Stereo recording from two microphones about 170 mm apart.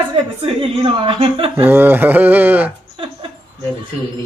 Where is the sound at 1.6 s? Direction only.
10° right (ahead or behind).